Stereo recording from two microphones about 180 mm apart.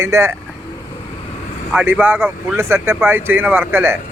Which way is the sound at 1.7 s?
10° right (ahead or behind).